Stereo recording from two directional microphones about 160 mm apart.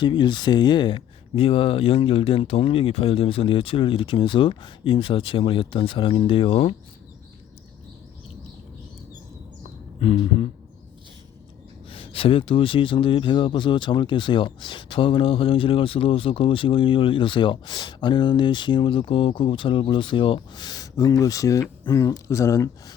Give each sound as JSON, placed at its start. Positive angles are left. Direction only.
{"t": 0.0, "sound": "speech", "side_deg": 30}
{"t": 10.0, "sound": "speech", "side_deg": 35}
{"t": 11.9, "sound": "speech", "side_deg": 35}